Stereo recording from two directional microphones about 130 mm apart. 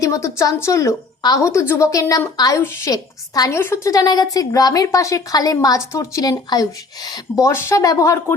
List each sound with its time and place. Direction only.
0.0 s speech: 25° left (ahead or behind)